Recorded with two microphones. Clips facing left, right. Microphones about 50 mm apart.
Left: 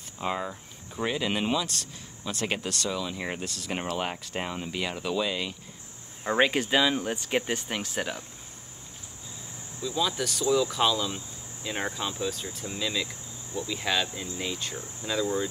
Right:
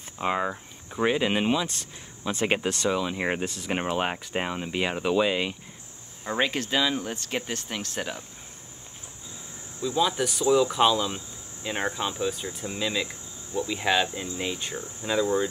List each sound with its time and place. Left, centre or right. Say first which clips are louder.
0.2 s speech: right 4 dB; right
6.2 s speech: left 3 dB; centre
9.8 s speech: right 4 dB; centre